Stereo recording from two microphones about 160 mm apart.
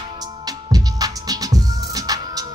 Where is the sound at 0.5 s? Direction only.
25° right (ahead or behind).